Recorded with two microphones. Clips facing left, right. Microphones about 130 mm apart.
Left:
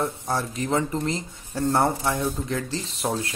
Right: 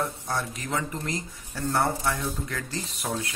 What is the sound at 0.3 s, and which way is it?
Speech, 30° left (ahead or behind).